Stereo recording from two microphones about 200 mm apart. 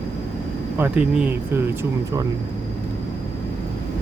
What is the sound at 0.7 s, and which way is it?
Speech, 10° right (ahead or behind).